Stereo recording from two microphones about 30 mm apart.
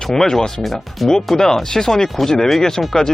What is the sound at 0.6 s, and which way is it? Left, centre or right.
Speech, centre.